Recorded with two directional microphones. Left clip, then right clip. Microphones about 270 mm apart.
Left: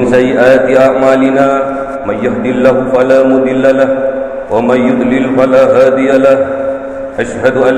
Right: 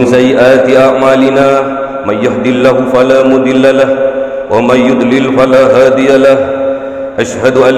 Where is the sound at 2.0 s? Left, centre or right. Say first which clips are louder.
Right 3 dB; right.